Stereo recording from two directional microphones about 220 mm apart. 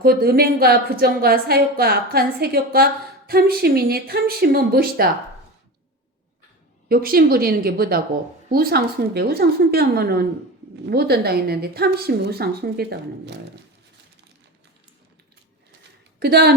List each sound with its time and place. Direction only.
0.0 s a woman's voice: 45° right (ahead or behind)
6.8 s a woman's voice: 45° right (ahead or behind)
16.2 s a woman's voice: 45° right (ahead or behind)